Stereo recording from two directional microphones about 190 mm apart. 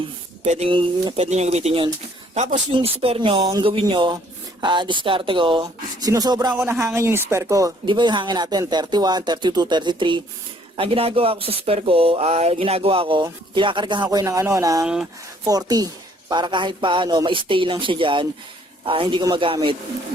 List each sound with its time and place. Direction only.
0.4 s speech: 35° right (ahead or behind)
6.5 s speech: 10° right (ahead or behind); by 19.7 s 25° right (ahead or behind)